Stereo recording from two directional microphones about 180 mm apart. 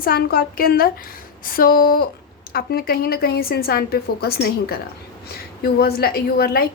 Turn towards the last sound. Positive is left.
turn(degrees=55)  # may be behind; listen again after turning